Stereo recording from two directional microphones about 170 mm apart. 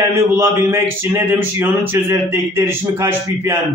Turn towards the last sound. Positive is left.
turn(degrees=-15)  # may be behind; listen again after turning